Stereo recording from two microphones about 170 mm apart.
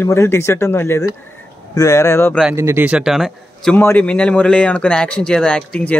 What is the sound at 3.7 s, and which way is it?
Speech, 10° left (ahead or behind).